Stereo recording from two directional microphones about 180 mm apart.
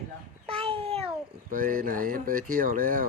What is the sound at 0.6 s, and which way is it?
Babbling, 30° right (ahead or behind).